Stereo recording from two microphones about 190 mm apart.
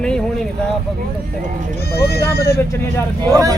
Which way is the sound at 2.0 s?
55° left (ahead or behind).